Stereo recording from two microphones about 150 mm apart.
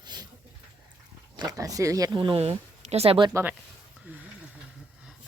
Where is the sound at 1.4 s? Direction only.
25° right (ahead or behind); by 3.3 s 40° right (ahead or behind).